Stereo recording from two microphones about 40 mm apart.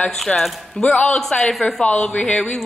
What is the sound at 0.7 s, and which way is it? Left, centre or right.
Speech, left.